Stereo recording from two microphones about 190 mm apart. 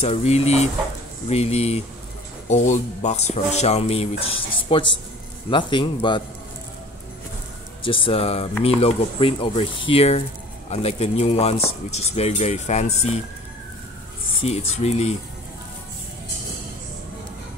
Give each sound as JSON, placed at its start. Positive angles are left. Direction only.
{"t": 0.0, "sound": "a man's voice", "side_deg": 30}
{"t": 7.8, "sound": "speech", "side_deg": 25}
{"t": 14.4, "sound": "speech", "side_deg": 30}